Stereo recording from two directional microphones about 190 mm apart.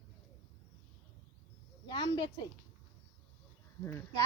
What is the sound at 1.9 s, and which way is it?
Speech, 25° left (ahead or behind).